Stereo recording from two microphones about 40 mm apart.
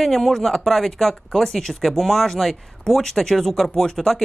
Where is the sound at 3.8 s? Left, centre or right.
Centre.